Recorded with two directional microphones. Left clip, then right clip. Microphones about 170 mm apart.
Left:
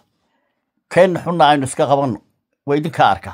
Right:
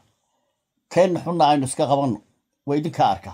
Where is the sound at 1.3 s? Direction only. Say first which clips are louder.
Left 5 dB; 35° left (ahead or behind).